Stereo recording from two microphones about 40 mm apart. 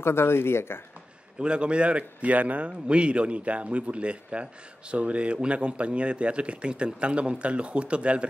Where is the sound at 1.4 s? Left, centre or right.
Right.